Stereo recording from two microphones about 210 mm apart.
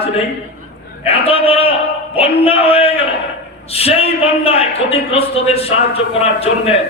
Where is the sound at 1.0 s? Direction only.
25° left (ahead or behind).